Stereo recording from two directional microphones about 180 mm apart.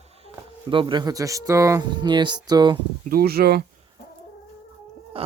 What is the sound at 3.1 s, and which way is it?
Speech, 60° right (ahead or behind).